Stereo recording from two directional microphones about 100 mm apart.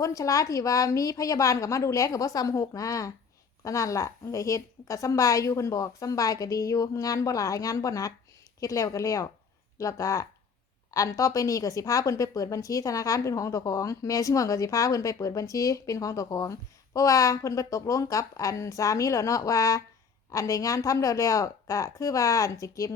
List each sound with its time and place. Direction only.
0.0 s a woman's voice: 35° left (ahead or behind)